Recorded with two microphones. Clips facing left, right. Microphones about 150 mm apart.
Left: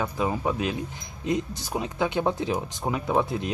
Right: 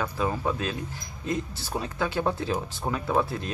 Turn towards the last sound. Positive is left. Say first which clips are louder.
# left 1 dB
turn(degrees=20)  # may be behind; listen again after turning